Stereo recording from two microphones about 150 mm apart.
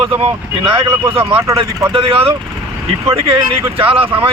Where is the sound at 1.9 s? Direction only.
40° right (ahead or behind).